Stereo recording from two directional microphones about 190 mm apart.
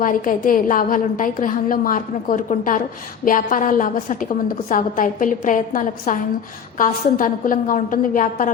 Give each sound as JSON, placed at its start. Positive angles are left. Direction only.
{"t": 0.0, "sound": "a woman's voice", "side_deg": 45}